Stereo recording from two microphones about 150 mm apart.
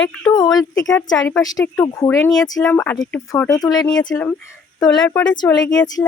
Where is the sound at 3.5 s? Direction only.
25° left (ahead or behind).